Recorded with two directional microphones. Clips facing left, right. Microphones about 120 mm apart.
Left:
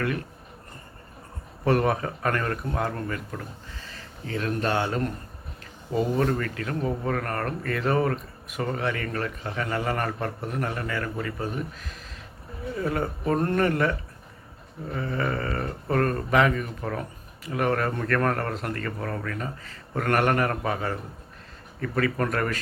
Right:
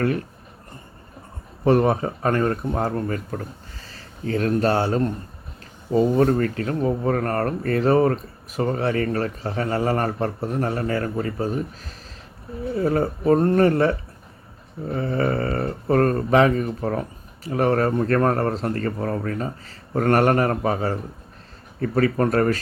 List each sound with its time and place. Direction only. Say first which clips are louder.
1.6 s speech: right 5 dB; 25° right (ahead or behind)